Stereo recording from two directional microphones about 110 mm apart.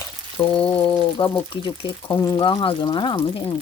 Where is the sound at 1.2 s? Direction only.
45° left (ahead or behind).